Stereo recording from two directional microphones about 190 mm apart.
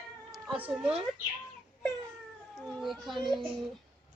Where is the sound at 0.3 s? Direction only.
5° right (ahead or behind).